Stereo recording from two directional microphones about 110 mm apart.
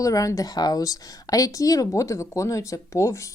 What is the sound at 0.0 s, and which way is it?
Speech, 30° left (ahead or behind).